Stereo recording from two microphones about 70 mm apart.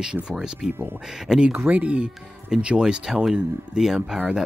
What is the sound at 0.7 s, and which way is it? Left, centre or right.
Speech, right.